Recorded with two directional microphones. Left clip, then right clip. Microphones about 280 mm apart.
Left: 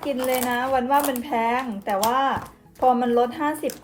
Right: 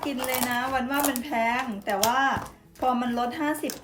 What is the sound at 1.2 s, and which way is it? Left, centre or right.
Speech, centre.